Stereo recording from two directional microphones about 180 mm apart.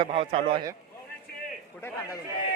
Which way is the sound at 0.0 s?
30° right (ahead or behind).